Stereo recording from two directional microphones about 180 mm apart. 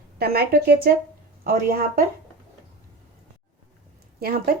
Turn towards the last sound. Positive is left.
turn(degrees=-60)  # may be behind; listen again after turning